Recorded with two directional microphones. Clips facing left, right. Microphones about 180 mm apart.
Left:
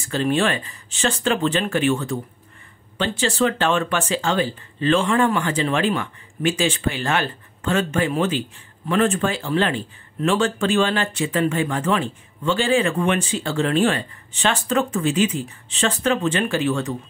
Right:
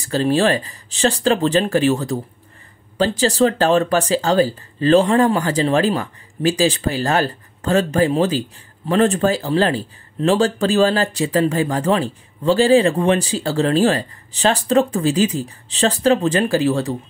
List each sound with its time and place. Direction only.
0.0 s speech: 35° right (ahead or behind)